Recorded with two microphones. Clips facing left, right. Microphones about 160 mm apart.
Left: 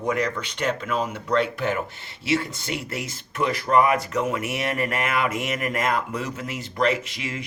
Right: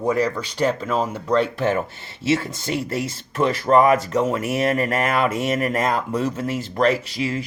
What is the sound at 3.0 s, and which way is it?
Speech, 30° right (ahead or behind).